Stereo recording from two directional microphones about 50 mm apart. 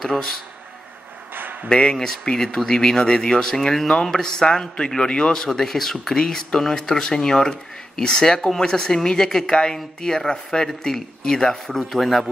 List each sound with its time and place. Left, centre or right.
0.0 s speech: centre
1.3 s a sound: right
1.7 s speech: centre